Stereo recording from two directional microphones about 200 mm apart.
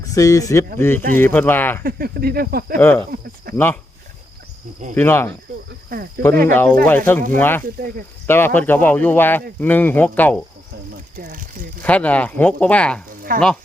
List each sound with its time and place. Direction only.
0.0 s speech: 15° left (ahead or behind)
1.8 s speech: 50° right (ahead or behind)
2.7 s speech: 10° left (ahead or behind)
3.5 s cricket: 50° right (ahead or behind)
4.9 s speech: 10° left (ahead or behind)
5.9 s speech: 50° right (ahead or behind)
6.5 s speech: 10° left (ahead or behind)
7.6 s speech: 45° right (ahead or behind)
8.3 s speech: 10° left (ahead or behind)
11.2 s speech: 45° right (ahead or behind)
11.8 s speech: 5° left (ahead or behind)
13.3 s speech: 45° right (ahead or behind)